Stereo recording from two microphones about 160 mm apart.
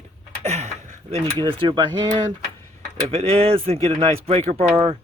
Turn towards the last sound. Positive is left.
turn(degrees=-40)  # may be behind; listen again after turning